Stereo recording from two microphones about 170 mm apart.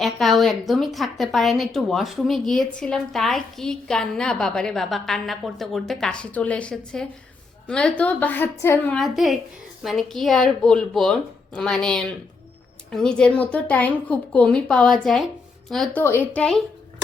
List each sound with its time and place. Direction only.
0.0 s a woman's voice: centre (ahead or behind)
9.0 s a woman's voice: centre (ahead or behind)
16.0 s a woman's voice: 10° left (ahead or behind)